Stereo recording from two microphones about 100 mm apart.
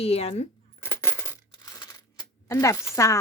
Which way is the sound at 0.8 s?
20° left (ahead or behind).